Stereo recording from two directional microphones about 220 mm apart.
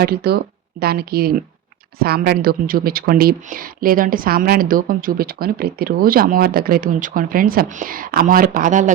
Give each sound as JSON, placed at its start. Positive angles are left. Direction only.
{"t": 0.0, "sound": "speech", "side_deg": -45}